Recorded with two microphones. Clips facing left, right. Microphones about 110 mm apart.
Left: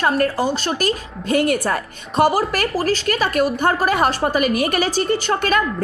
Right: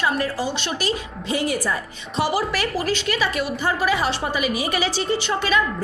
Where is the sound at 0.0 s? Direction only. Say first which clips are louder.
Left 5 dB; 50° left (ahead or behind).